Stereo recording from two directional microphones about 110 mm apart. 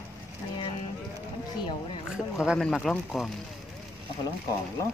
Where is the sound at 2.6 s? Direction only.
5° left (ahead or behind).